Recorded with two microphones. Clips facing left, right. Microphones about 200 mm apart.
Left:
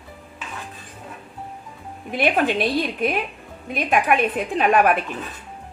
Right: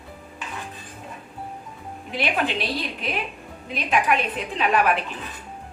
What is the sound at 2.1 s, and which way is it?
A woman's voice, 50° left (ahead or behind).